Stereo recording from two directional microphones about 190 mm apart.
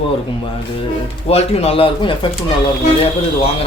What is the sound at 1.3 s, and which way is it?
A man's voice, 30° left (ahead or behind).